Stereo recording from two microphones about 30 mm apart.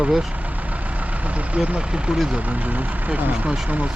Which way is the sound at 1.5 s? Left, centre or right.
Right.